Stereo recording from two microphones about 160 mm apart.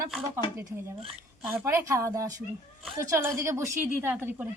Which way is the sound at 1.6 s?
15° right (ahead or behind).